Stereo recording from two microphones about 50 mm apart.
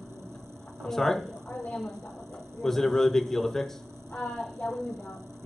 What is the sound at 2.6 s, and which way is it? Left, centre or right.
Speech, centre.